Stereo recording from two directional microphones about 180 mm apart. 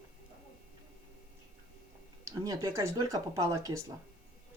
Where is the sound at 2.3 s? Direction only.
20° right (ahead or behind).